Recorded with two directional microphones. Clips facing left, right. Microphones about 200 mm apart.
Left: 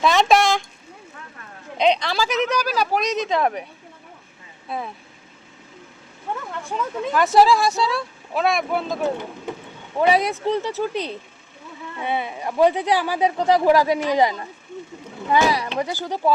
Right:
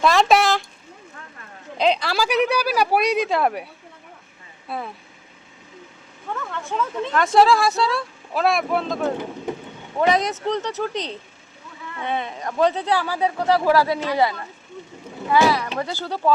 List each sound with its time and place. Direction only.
0.0 s speech: centre (ahead or behind)
1.8 s speech: 5° right (ahead or behind)
4.7 s speech: 5° right (ahead or behind)
6.5 s speech: 10° left (ahead or behind)
10.1 s speech: 5° left (ahead or behind)